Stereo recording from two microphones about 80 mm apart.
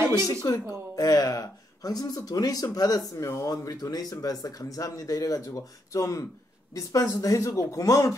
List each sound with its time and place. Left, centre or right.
0.3 s speech: left
3.2 s speech: left
3.4 s speech: left